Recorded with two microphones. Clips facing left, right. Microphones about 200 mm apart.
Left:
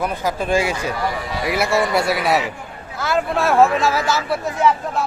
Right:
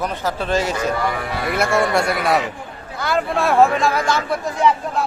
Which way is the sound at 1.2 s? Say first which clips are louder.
Even; 55° right (ahead or behind).